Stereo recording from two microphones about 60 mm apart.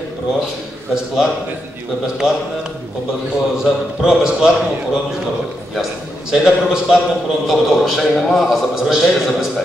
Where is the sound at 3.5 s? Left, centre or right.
Centre.